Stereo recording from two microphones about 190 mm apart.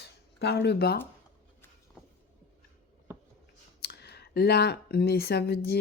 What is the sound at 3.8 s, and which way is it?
Speech, 60° left (ahead or behind).